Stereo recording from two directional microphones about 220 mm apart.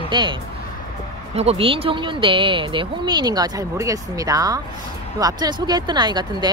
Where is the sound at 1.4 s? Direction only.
25° right (ahead or behind).